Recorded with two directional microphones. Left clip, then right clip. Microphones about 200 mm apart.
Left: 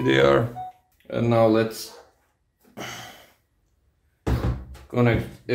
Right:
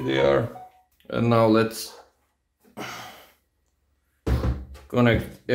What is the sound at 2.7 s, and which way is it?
Sigh, 20° right (ahead or behind).